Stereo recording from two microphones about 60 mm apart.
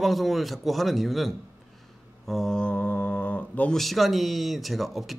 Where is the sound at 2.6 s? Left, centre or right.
Left.